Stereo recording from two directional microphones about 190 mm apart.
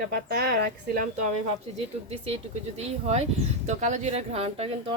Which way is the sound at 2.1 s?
30° right (ahead or behind).